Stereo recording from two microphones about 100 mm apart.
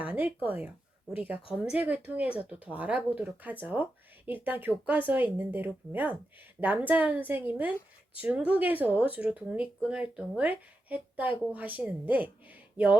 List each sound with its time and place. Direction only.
0.0 s speech: 15° right (ahead or behind)